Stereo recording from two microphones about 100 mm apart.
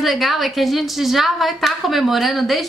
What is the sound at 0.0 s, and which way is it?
A woman's voice, centre (ahead or behind).